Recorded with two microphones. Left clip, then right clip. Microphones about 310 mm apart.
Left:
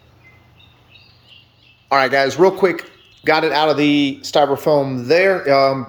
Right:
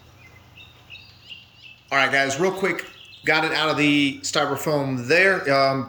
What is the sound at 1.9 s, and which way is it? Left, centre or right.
Speech, centre.